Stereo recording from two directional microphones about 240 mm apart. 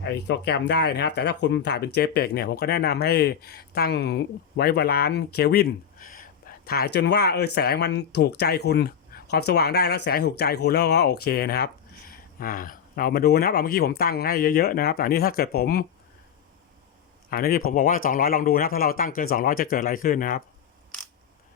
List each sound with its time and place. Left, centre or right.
0.0 s speech: left
17.2 s a man's voice: left